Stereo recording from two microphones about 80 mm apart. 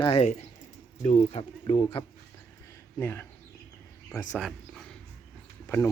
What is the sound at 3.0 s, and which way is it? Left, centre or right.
Speech, left.